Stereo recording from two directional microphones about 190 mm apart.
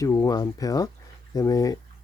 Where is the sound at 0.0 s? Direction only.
20° left (ahead or behind).